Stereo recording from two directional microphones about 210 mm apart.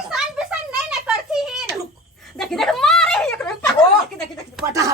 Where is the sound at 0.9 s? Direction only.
5° right (ahead or behind).